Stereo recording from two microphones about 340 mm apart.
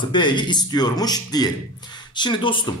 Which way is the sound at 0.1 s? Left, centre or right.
Centre.